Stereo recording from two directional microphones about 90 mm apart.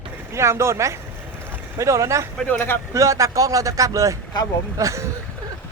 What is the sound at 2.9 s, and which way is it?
Speech, 35° right (ahead or behind).